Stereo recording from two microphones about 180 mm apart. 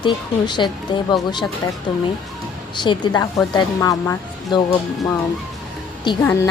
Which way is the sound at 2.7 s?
25° left (ahead or behind).